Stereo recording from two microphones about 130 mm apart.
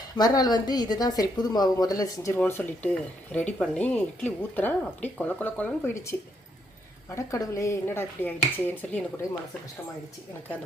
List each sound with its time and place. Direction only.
0.2 s speech: 30° left (ahead or behind)
2.4 s speech: 15° left (ahead or behind)
7.3 s speech: 25° left (ahead or behind)